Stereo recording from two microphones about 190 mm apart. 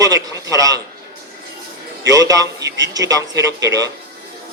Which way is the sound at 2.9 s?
20° right (ahead or behind).